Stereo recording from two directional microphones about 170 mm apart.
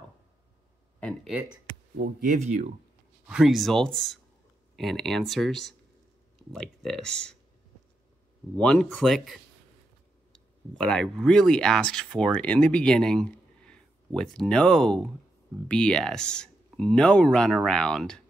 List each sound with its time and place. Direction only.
0.9 s speech: 5° left (ahead or behind)
2.4 s speech: 40° right (ahead or behind)
3.3 s speech: 5° right (ahead or behind)
8.5 s speech: 5° left (ahead or behind)
10.7 s speech: 5° left (ahead or behind)